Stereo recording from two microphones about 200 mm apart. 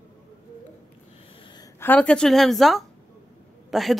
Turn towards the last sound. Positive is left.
turn(degrees=0)  # may be behind; listen again after turning